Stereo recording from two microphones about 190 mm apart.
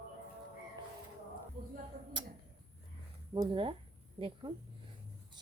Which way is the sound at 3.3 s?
25° right (ahead or behind).